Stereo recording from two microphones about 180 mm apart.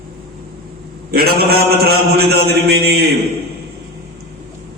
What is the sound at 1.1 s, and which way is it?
A man's voice, 60° right (ahead or behind).